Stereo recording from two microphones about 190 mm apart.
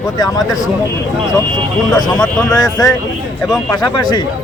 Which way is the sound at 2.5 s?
20° left (ahead or behind).